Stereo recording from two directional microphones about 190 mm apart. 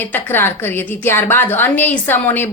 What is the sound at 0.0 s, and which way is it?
A woman's voice, 10° left (ahead or behind).